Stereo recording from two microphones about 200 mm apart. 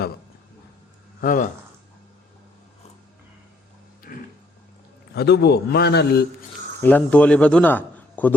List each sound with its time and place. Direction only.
1.2 s a man's voice: 40° left (ahead or behind)
4.1 s a sound: 45° left (ahead or behind)
5.1 s a man's voice: 55° left (ahead or behind)
6.8 s a man's voice: 5° left (ahead or behind)